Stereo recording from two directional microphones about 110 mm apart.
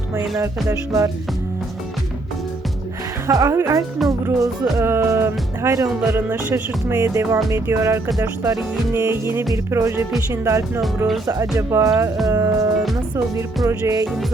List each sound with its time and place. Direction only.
0.3 s music: 30° right (ahead or behind)
3.2 s music: 30° right (ahead or behind)
10.8 s speech: centre (ahead or behind)
11.3 s music: 30° right (ahead or behind)
13.7 s music: 30° right (ahead or behind)